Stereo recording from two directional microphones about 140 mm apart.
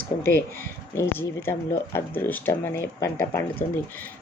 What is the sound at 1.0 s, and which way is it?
Speech, 15° left (ahead or behind).